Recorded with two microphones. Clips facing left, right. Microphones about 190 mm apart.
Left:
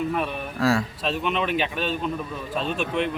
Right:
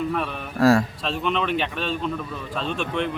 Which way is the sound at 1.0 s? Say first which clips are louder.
Even; 5° left (ahead or behind).